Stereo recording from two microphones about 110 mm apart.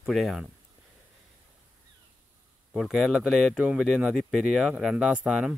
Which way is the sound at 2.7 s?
Centre (ahead or behind).